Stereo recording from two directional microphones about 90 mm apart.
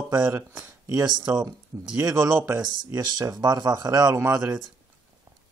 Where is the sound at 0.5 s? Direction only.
15° right (ahead or behind).